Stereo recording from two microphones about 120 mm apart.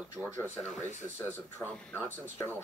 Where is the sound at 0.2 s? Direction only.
10° right (ahead or behind).